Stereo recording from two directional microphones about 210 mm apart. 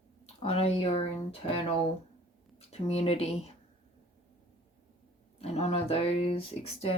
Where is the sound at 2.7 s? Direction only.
30° left (ahead or behind).